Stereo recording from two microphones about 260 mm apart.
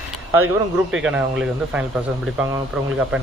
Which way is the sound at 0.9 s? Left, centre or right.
Centre.